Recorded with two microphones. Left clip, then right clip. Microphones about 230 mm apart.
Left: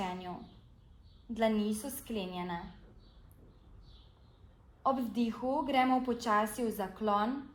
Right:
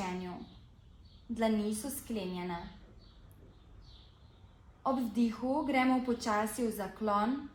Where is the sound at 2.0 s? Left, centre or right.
Left.